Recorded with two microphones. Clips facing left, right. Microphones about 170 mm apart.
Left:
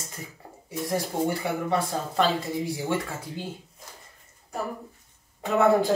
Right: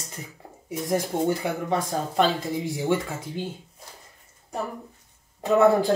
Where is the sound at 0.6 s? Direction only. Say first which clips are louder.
Right 3 dB; 20° right (ahead or behind).